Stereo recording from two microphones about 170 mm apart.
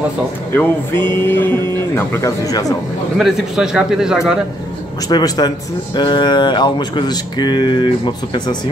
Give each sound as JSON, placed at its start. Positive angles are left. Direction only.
{"t": 0.5, "sound": "speech", "side_deg": 10}
{"t": 3.2, "sound": "a man's voice", "side_deg": -5}
{"t": 5.1, "sound": "speech", "side_deg": 25}